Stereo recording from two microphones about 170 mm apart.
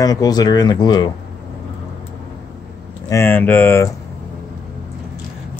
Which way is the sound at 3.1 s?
15° left (ahead or behind).